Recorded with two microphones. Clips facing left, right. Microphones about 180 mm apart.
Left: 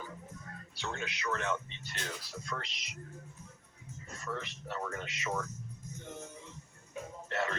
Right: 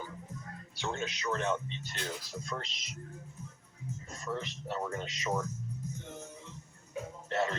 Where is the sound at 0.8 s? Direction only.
25° right (ahead or behind).